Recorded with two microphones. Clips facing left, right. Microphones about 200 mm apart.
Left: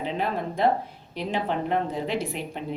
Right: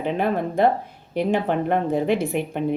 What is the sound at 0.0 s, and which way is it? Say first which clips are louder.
Speech: right 5 dB; 55° right (ahead or behind).